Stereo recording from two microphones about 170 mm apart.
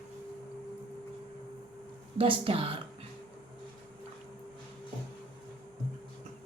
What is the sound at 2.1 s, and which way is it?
Speech, 35° right (ahead or behind).